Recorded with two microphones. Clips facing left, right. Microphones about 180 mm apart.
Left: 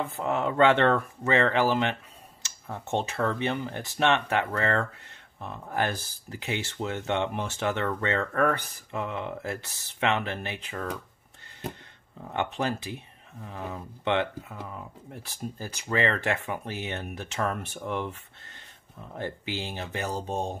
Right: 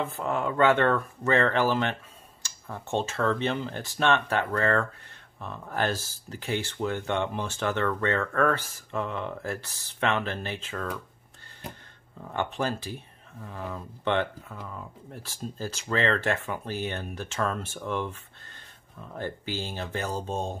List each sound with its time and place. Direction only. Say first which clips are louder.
0.1 s speech: left 1 dB; 20° left (ahead or behind)
12.3 s speech: even; 20° left (ahead or behind)
15.4 s speech: right 2 dB; 15° left (ahead or behind)
19.1 s speech: even; 20° left (ahead or behind)